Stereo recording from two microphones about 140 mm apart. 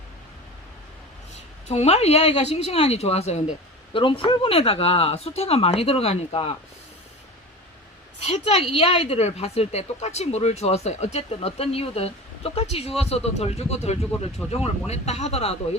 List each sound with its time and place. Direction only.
1.6 s speech: 50° left (ahead or behind)
3.9 s speech: 40° left (ahead or behind)
8.7 s speech: 40° left (ahead or behind)